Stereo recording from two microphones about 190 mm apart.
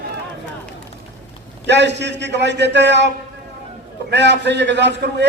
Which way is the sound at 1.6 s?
65° right (ahead or behind).